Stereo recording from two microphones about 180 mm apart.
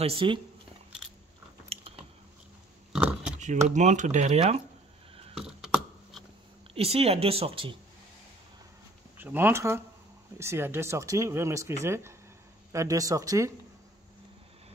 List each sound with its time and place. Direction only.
0.0 s speech: 30° right (ahead or behind)
2.9 s a sound: 5° right (ahead or behind)
3.3 s speech: 40° right (ahead or behind)
5.4 s a sound: 5° right (ahead or behind)
6.7 s speech: 35° right (ahead or behind)
9.2 s speech: 10° right (ahead or behind)